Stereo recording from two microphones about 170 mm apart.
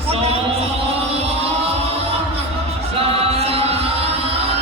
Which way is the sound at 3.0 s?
35° right (ahead or behind).